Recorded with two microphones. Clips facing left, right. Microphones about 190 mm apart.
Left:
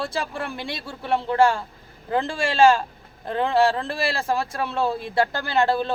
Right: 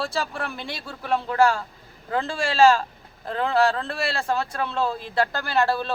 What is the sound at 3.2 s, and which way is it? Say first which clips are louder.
Speech: left 1 dB; 20° left (ahead or behind).